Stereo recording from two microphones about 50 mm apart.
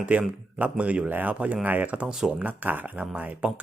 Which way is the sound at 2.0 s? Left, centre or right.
Centre.